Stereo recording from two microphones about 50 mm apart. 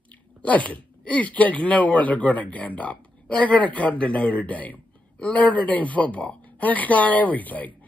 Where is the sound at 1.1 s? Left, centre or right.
Left.